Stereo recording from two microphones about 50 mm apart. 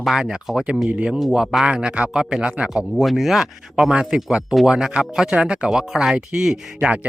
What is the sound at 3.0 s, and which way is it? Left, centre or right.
Speech, centre.